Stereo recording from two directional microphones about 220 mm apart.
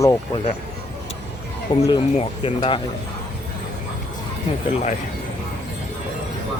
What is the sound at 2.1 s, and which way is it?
Speech, 25° left (ahead or behind).